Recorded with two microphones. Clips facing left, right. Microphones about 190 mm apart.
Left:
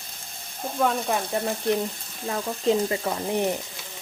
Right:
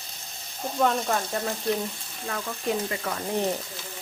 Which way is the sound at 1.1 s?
15° left (ahead or behind).